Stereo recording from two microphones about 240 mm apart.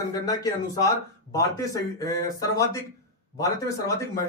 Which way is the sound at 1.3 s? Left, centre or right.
Centre.